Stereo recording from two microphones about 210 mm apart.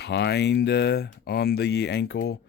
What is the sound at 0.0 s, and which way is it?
Speech, 50° left (ahead or behind).